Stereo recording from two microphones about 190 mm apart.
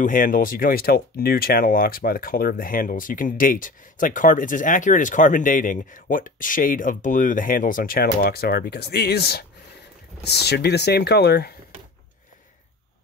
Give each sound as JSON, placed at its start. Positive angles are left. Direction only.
{"t": 0.0, "sound": "speech", "side_deg": 45}